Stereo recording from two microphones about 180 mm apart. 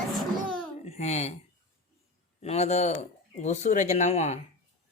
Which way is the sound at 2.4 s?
35° left (ahead or behind).